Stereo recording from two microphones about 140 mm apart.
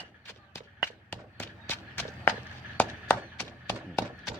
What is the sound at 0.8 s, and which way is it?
Walk, 15° left (ahead or behind).